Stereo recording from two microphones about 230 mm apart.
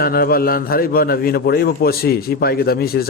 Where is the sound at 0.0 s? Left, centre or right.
Left.